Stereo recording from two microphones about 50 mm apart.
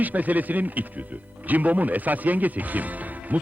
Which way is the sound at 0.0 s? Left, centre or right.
Right.